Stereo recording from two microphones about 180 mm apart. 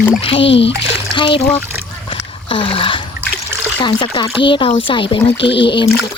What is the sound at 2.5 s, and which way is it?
Speech, 30° left (ahead or behind).